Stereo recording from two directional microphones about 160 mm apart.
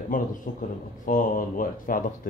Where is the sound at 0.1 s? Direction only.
55° left (ahead or behind).